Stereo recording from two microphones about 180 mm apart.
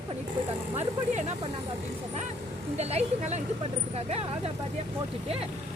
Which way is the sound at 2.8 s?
35° right (ahead or behind).